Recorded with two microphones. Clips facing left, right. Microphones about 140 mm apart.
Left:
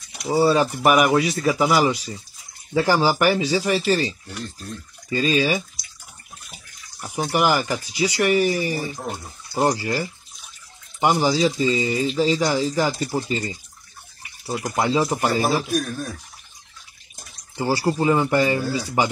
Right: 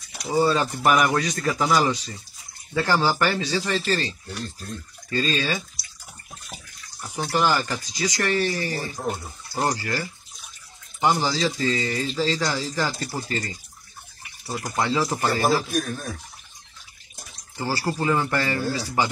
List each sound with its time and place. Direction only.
0.2 s a man's voice: 5° left (ahead or behind)
7.0 s a man's voice: 15° left (ahead or behind)
8.9 s speech: centre (ahead or behind)
9.6 s a man's voice: 15° left (ahead or behind)
14.6 s a man's voice: 15° left (ahead or behind)
17.6 s a man's voice: 15° left (ahead or behind)